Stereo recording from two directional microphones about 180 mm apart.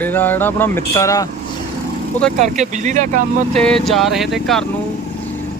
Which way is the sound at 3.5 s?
5° left (ahead or behind).